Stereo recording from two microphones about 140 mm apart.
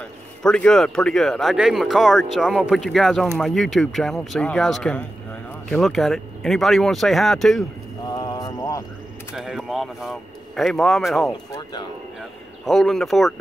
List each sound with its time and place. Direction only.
0.4 s speech: 5° left (ahead or behind)
8.1 s a sound: 30° left (ahead or behind)
9.3 s speech: 5° right (ahead or behind)
11.2 s speech: 20° left (ahead or behind)
12.6 s speech: centre (ahead or behind)